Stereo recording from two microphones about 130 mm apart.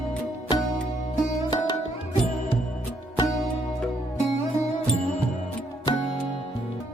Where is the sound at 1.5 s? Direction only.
35° left (ahead or behind).